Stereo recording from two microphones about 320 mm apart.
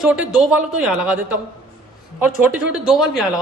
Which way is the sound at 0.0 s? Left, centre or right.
Centre.